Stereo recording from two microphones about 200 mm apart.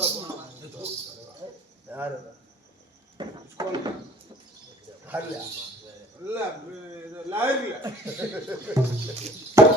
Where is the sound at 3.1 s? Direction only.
20° right (ahead or behind).